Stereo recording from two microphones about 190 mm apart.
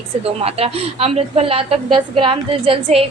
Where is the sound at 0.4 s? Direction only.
30° right (ahead or behind).